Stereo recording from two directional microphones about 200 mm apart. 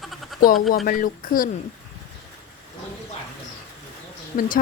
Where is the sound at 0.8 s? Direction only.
45° left (ahead or behind).